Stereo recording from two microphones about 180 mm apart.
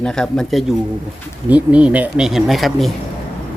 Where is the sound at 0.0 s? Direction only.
5° left (ahead or behind).